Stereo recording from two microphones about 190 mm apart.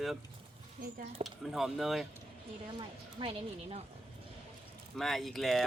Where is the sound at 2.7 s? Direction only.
25° right (ahead or behind).